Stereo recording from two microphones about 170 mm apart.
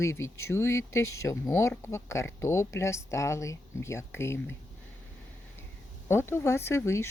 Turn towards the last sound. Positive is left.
turn(degrees=15)  # may be behind; listen again after turning